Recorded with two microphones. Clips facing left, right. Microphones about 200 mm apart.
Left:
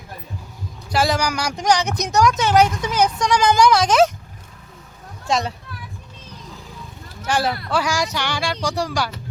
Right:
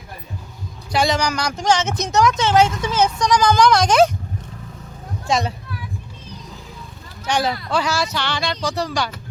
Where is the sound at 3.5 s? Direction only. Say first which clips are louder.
Even; 5° left (ahead or behind).